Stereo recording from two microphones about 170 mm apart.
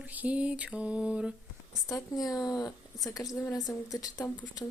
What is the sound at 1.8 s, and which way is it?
A woman's voice, 20° left (ahead or behind).